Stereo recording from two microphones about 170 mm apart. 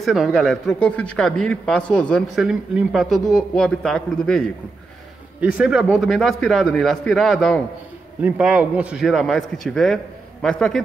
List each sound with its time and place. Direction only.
0.0 s speech: centre (ahead or behind)